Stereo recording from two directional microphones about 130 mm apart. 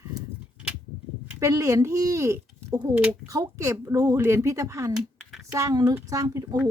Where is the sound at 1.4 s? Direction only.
25° right (ahead or behind).